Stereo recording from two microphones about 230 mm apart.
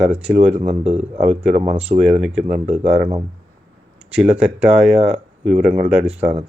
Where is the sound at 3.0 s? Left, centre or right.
Right.